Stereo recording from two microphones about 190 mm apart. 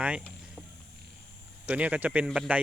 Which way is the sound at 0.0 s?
5° right (ahead or behind).